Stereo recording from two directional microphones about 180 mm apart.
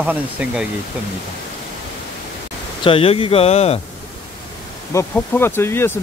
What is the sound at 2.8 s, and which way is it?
Speech, 30° left (ahead or behind).